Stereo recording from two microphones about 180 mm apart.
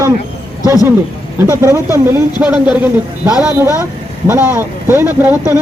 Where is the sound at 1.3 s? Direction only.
15° right (ahead or behind).